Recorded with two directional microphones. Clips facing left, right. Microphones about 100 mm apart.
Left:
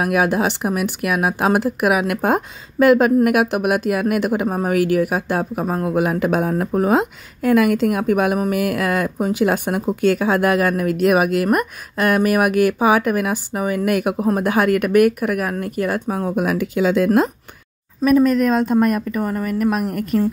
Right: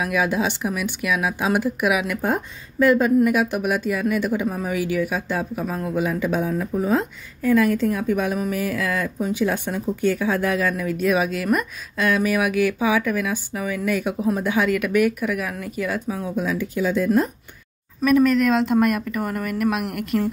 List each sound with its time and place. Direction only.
0.0 s speech: 60° left (ahead or behind)
2.0 s a woman's voice: 85° left
3.3 s speech: 70° left (ahead or behind); by 17.3 s 90° left
18.0 s a woman's voice: 40° left (ahead or behind)